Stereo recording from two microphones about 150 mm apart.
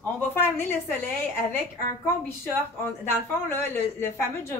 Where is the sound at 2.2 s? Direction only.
15° left (ahead or behind).